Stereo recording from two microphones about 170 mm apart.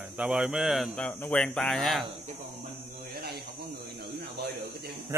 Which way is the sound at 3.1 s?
70° right (ahead or behind).